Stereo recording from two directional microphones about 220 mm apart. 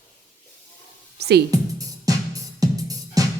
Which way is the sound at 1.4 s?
15° right (ahead or behind).